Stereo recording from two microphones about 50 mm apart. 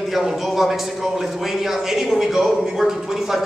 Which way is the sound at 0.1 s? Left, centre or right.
Centre.